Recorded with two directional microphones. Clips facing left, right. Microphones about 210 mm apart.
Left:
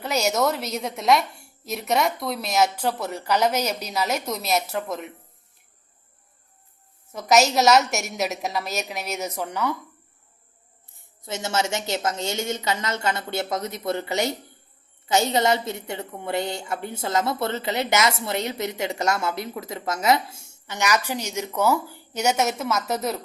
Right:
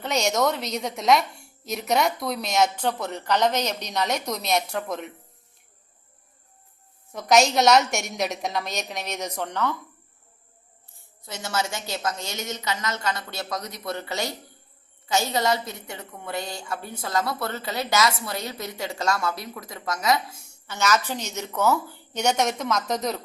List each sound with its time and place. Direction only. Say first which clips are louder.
0.0 s a woman's voice: left 1 dB; 5° left (ahead or behind)
7.1 s a woman's voice: even; 5° left (ahead or behind)
11.3 s a woman's voice: left 3 dB; 25° left (ahead or behind)
20.7 s a woman's voice: even; 15° left (ahead or behind)